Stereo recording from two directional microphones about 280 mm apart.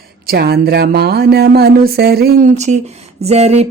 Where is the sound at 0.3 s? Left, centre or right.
Right.